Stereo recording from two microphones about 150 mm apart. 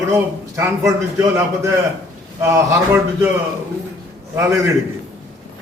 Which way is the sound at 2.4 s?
20° right (ahead or behind).